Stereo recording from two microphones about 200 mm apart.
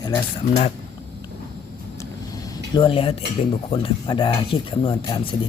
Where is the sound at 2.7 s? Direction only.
25° left (ahead or behind).